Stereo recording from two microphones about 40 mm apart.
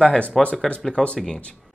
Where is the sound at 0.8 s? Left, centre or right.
Left.